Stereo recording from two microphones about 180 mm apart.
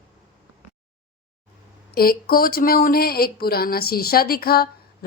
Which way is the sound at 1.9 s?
55° left (ahead or behind).